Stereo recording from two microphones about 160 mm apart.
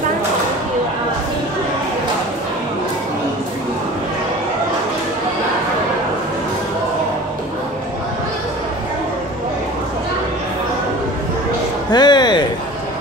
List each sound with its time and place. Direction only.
11.9 s music: 25° left (ahead or behind)